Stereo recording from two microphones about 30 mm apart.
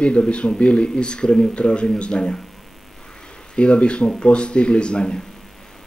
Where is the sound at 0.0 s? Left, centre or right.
Left.